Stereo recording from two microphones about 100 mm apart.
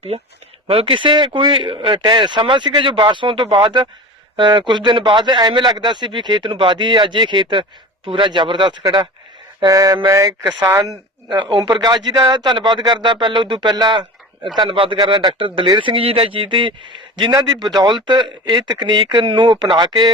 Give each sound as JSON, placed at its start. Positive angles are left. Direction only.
{"t": 0.7, "sound": "speech", "side_deg": -65}
{"t": 8.8, "sound": "mantra", "side_deg": -40}
{"t": 10.7, "sound": "speech", "side_deg": -30}
{"t": 11.3, "sound": "speech", "side_deg": -50}
{"t": 17.3, "sound": "speech", "side_deg": -40}